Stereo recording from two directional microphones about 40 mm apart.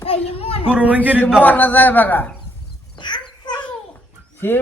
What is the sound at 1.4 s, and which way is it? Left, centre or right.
Speech, left.